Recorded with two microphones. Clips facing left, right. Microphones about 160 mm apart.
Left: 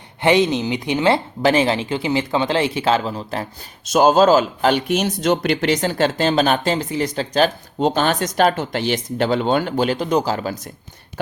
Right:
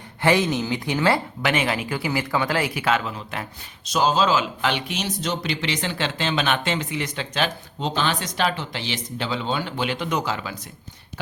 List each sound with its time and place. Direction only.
0.2 s speech: 20° left (ahead or behind)
1.4 s speech: 30° left (ahead or behind)
3.8 s speech: 50° left (ahead or behind)